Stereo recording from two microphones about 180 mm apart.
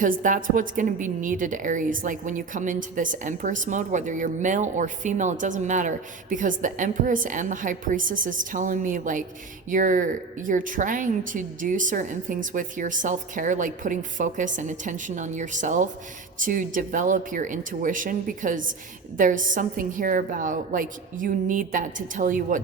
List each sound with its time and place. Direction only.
0.0 s speech: 45° right (ahead or behind)